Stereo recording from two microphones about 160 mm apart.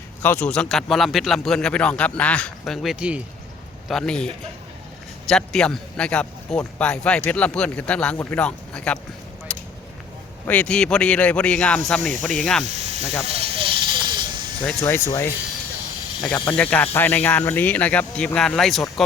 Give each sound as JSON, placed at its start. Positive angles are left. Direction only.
{"t": 0.2, "sound": "a man's voice", "side_deg": 10}
{"t": 5.3, "sound": "a man's voice", "side_deg": 5}
{"t": 9.5, "sound": "a sound", "side_deg": 5}
{"t": 10.4, "sound": "a man's voice", "side_deg": 10}
{"t": 12.6, "sound": "speech", "side_deg": -45}
{"t": 13.2, "sound": "a sound", "side_deg": -40}
{"t": 14.8, "sound": "speech", "side_deg": 15}
{"t": 16.3, "sound": "a man's voice", "side_deg": 10}